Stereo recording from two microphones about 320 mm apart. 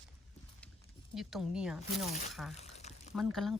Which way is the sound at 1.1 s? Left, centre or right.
Centre.